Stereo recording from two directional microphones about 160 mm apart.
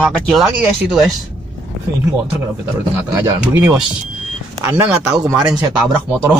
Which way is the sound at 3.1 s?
20° right (ahead or behind).